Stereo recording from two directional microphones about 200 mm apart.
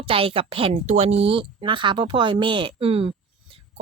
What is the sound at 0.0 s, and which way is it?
A woman's voice, 25° right (ahead or behind).